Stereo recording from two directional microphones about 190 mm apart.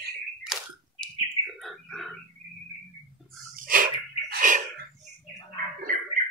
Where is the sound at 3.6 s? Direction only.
45° right (ahead or behind).